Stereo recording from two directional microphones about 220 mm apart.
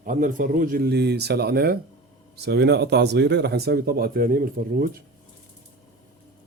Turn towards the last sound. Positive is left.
turn(degrees=-40)  # may be behind; listen again after turning